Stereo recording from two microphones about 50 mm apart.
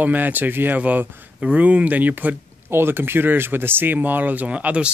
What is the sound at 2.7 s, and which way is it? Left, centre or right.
Speech, right.